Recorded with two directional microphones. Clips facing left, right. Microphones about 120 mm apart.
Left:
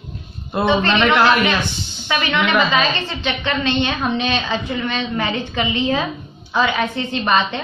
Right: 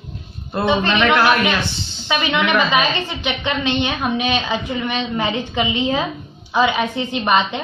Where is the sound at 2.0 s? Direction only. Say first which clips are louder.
Even; 15° right (ahead or behind).